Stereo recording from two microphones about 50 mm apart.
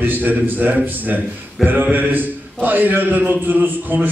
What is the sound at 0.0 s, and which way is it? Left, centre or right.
A man's voice, right.